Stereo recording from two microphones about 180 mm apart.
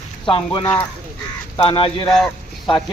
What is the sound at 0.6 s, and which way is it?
Speech, 10° left (ahead or behind).